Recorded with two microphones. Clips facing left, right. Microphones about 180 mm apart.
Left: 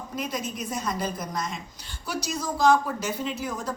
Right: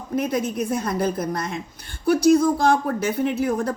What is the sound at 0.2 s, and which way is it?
Speech, 60° right (ahead or behind).